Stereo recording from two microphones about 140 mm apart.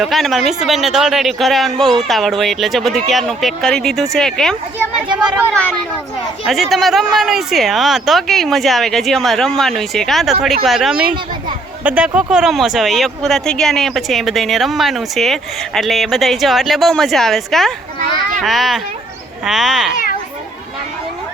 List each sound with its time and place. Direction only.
0.0 s speech: centre (ahead or behind)
6.5 s speech: centre (ahead or behind)